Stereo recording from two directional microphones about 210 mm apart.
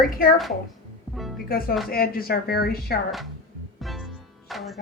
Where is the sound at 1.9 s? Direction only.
45° left (ahead or behind).